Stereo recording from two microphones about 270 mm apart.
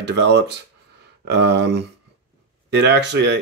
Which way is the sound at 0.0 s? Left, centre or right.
Right.